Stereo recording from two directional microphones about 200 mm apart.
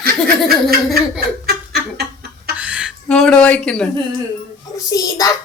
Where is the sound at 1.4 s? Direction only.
50° right (ahead or behind).